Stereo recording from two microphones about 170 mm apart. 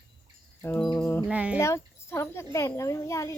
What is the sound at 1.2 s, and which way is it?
Speech, 5° right (ahead or behind).